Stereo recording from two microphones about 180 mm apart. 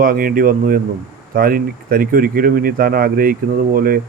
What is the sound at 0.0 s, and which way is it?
Speech, 50° right (ahead or behind).